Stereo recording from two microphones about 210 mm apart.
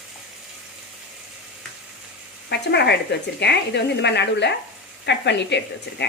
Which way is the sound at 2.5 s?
55° left (ahead or behind).